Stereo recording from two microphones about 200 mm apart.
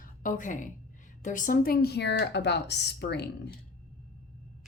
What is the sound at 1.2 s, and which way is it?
Speech, 40° left (ahead or behind).